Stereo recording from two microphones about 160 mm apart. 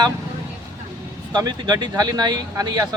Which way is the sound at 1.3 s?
25° right (ahead or behind).